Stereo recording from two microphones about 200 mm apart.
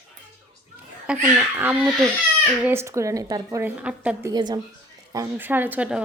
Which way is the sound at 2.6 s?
10° right (ahead or behind).